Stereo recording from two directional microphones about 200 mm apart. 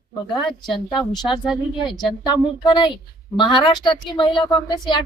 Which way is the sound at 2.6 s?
25° left (ahead or behind).